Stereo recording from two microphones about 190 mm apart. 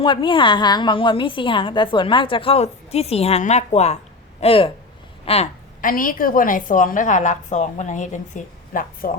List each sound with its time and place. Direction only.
0.0 s a woman's voice: 25° left (ahead or behind)
5.2 s a sound: 30° left (ahead or behind)
5.8 s a woman's voice: 45° left (ahead or behind)